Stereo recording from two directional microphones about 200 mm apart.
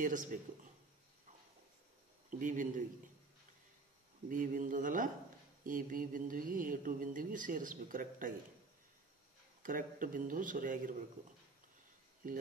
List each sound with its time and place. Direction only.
0.0 s speech: 40° right (ahead or behind)
2.3 s speech: 40° right (ahead or behind)
4.3 s speech: 45° right (ahead or behind)
9.6 s speech: 45° right (ahead or behind)